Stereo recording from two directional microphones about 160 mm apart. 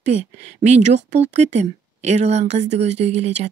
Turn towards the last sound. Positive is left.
turn(degrees=-45)  # may be behind; listen again after turning